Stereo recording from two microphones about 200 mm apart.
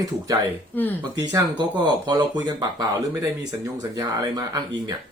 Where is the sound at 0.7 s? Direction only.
10° left (ahead or behind).